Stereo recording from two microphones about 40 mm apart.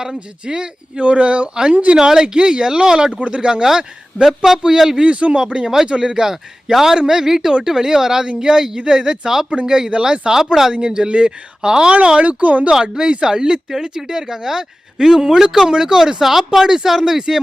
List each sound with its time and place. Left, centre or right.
0.4 s speech: right
1.0 s speech: right
2.0 s speech: centre
4.7 s speech: centre
5.0 s speech: right
5.4 s speech: right
10.8 s speech: right
12.2 s speech: right
12.9 s speech: right